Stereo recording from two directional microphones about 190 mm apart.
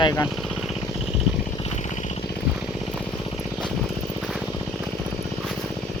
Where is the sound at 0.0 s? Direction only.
20° left (ahead or behind).